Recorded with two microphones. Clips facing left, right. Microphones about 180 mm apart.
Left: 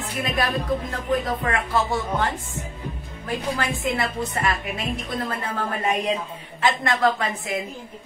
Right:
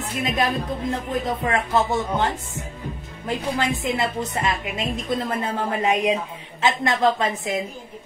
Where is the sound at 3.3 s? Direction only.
20° right (ahead or behind).